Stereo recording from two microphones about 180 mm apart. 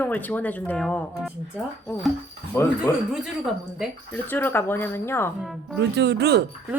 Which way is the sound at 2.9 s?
15° left (ahead or behind).